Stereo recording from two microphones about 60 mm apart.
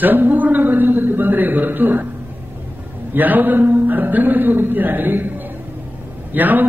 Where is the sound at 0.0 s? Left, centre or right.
Right.